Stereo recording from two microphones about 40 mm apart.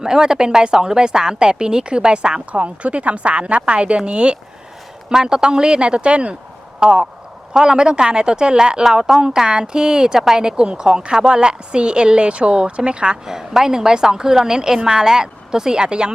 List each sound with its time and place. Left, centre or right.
0.0 s a woman's voice: centre
2.5 s a woman's voice: right
13.2 s a woman's voice: centre